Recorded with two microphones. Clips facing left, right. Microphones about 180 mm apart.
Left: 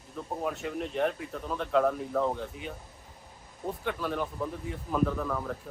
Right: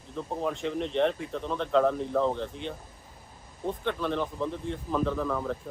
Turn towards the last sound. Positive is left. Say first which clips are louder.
# right 3 dB
turn(degrees=0)  # may be behind; listen again after turning